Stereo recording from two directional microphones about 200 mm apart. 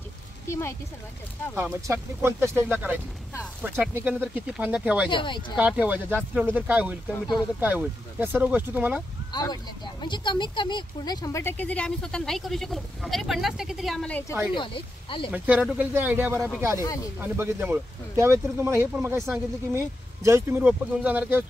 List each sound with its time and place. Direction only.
0.5 s speech: 15° left (ahead or behind)
1.5 s speech: 15° right (ahead or behind)
5.1 s speech: 25° left (ahead or behind)
5.6 s speech: 5° right (ahead or behind)
9.3 s speech: 20° left (ahead or behind); by 14.2 s 5° left (ahead or behind)
14.5 s speech: 25° left (ahead or behind)
15.3 s speech: 5° right (ahead or behind)
16.8 s speech: 15° left (ahead or behind)
17.2 s speech: 10° right (ahead or behind)